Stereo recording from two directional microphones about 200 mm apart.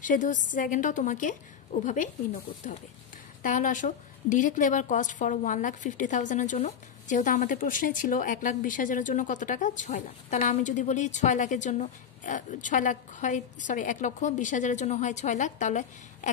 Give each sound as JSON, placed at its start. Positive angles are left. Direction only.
{"t": 0.0, "sound": "a woman's voice", "side_deg": 40}